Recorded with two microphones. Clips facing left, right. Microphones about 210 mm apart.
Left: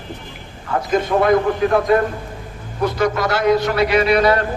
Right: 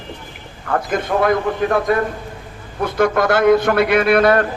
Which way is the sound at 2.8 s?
55° right (ahead or behind).